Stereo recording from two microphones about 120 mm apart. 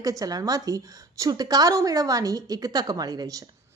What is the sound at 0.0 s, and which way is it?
A woman's voice, 30° right (ahead or behind).